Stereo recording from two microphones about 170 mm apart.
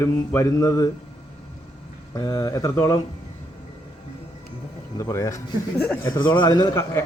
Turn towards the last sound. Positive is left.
turn(degrees=20)  # may be behind; listen again after turning